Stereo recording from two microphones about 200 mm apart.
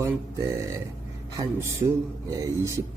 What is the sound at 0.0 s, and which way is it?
Speech, 15° right (ahead or behind).